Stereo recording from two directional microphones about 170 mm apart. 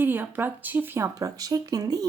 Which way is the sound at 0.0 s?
10° right (ahead or behind).